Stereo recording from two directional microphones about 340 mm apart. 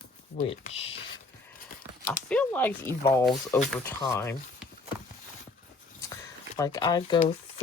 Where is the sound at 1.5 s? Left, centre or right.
Left.